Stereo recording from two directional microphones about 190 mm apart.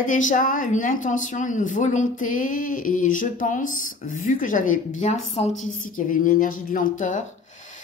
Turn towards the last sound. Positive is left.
turn(degrees=40)  # may be behind; listen again after turning